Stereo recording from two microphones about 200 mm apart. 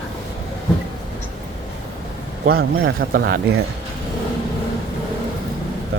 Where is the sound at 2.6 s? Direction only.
50° right (ahead or behind).